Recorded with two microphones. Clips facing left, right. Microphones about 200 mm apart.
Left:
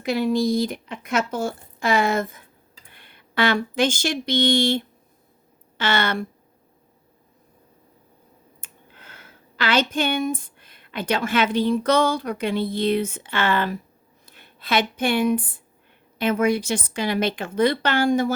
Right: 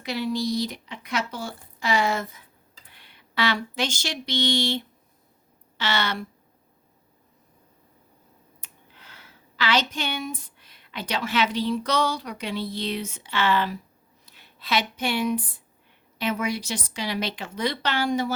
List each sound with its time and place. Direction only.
0.0 s speech: 50° left (ahead or behind)
8.6 s a woman's voice: 50° left (ahead or behind)